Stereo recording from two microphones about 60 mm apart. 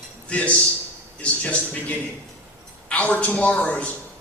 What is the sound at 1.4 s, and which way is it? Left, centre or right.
A man's voice, left.